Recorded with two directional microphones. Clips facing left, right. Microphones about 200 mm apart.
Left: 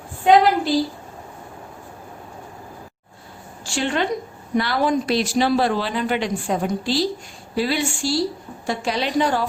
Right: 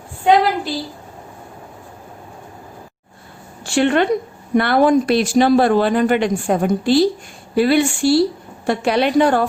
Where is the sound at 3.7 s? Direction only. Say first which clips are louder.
Right 7 dB; 60° right (ahead or behind).